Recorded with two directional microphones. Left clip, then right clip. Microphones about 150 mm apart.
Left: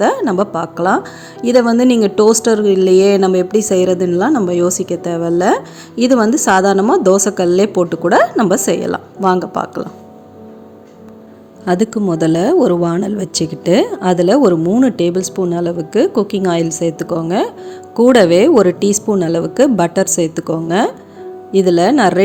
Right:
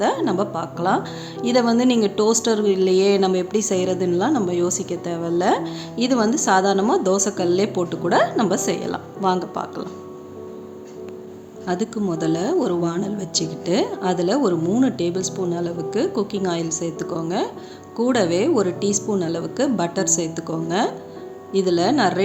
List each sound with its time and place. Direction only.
0.0 s speech: 45° left (ahead or behind)
11.6 s speech: 55° left (ahead or behind)